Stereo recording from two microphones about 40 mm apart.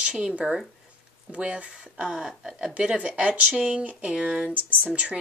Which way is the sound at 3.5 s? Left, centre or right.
Centre.